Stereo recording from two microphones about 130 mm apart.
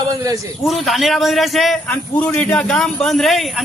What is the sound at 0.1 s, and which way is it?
Speech, 25° right (ahead or behind).